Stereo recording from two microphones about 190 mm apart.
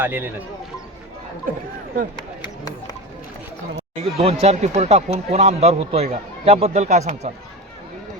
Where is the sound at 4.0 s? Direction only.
30° right (ahead or behind).